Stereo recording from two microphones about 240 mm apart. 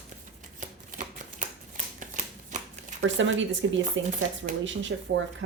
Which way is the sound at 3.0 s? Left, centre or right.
Right.